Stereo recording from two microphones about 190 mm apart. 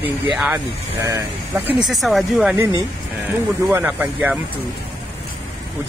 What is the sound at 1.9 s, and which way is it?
Speech, centre (ahead or behind).